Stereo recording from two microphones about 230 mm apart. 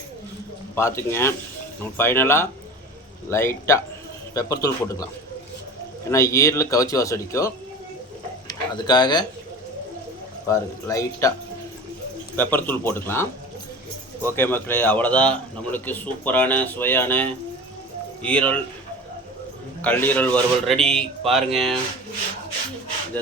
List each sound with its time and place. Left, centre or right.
0.8 s a man's voice: centre
6.1 s a man's voice: centre
10.5 s a man's voice: centre
12.4 s a man's voice: centre
14.3 s a man's voice: centre
19.8 s a man's voice: centre